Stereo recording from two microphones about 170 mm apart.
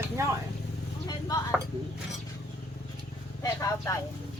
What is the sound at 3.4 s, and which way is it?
Speech, 20° left (ahead or behind).